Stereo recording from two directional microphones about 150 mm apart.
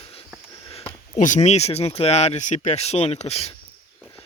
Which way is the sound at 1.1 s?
55° left (ahead or behind).